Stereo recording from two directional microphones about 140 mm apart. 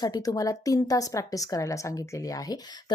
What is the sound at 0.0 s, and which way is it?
A woman's voice, 25° left (ahead or behind).